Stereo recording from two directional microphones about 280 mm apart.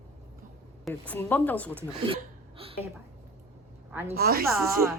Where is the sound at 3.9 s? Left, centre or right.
Centre.